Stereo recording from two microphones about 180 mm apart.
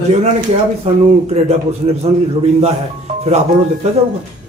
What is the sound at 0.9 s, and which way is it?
Speech, 40° right (ahead or behind).